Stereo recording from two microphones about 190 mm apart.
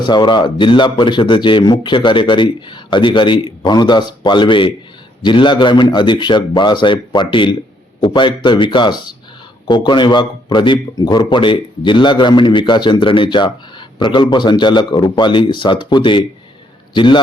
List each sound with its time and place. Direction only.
0.0 s a man's voice: 25° left (ahead or behind)